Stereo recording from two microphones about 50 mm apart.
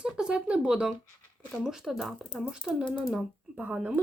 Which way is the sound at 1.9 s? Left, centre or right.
Centre.